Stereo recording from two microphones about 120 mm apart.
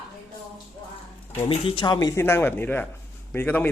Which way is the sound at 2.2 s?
20° left (ahead or behind).